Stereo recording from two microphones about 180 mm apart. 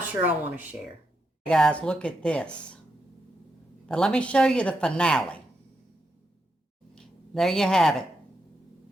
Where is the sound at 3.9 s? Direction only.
5° left (ahead or behind).